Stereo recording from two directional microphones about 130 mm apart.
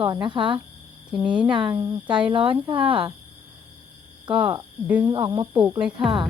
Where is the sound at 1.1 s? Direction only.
10° right (ahead or behind).